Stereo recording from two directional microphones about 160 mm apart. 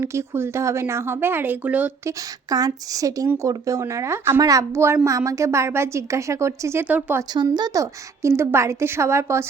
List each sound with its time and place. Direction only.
0.0 s a woman's voice: 15° right (ahead or behind)
2.5 s a woman's voice: 25° right (ahead or behind)
7.3 s a woman's voice: 25° right (ahead or behind)